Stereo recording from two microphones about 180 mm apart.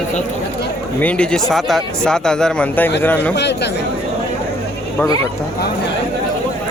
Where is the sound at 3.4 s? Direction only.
70° left (ahead or behind).